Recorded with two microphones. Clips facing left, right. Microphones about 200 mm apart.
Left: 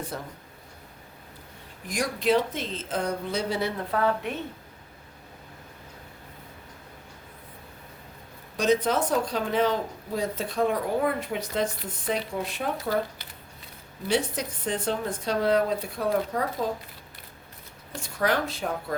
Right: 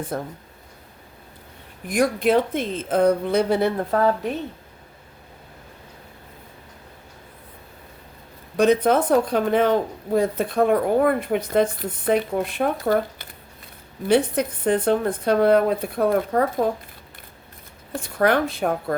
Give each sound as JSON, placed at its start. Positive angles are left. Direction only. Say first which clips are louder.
{"t": 0.1, "sound": "speech", "louder": "right 8 dB", "side_deg": -50}
{"t": 1.9, "sound": "speech", "louder": "right 5 dB", "side_deg": -55}
{"t": 4.2, "sound": "a woman's voice", "louder": "right 6 dB", "side_deg": -35}
{"t": 8.5, "sound": "speech", "louder": "right 6 dB", "side_deg": -55}
{"t": 17.9, "sound": "speech", "louder": "right 6 dB", "side_deg": -55}